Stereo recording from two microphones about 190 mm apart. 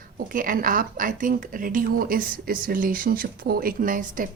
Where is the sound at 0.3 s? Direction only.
45° right (ahead or behind).